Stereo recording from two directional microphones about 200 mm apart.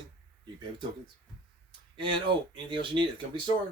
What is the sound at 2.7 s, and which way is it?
Speech, 25° right (ahead or behind).